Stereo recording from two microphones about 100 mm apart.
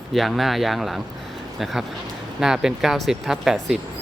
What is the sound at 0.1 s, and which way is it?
Speech, centre (ahead or behind).